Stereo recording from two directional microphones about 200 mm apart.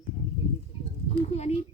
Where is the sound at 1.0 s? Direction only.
30° left (ahead or behind).